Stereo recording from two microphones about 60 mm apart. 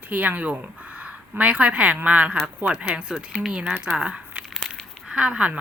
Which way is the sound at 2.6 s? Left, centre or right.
Centre.